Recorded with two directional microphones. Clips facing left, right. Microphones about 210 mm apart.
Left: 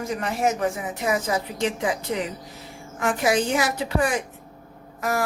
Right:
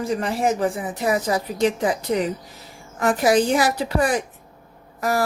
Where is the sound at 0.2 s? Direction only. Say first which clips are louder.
Right 2 dB; 30° right (ahead or behind).